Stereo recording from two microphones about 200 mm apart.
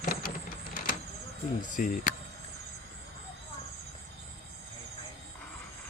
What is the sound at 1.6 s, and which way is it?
Speech, 40° left (ahead or behind).